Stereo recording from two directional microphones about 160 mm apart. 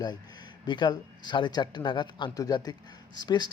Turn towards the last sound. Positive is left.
turn(degrees=25)  # may be behind; listen again after turning